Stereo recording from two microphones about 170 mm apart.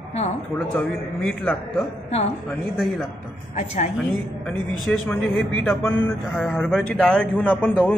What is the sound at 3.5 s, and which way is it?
Speech, 40° left (ahead or behind).